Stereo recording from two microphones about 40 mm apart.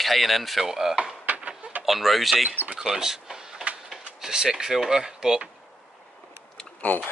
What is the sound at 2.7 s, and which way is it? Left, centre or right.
Speech, centre.